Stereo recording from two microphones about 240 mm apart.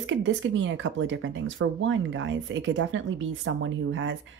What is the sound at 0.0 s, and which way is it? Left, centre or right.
Speech, right.